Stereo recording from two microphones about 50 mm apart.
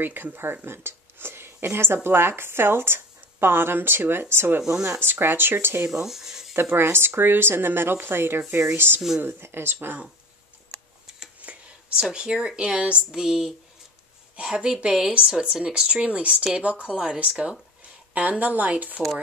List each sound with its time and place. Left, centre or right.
0.0 s speech: right
5.9 s speech: centre
6.5 s speech: right
11.4 s a sound: right
11.9 s a woman's voice: centre; by 18.9 s right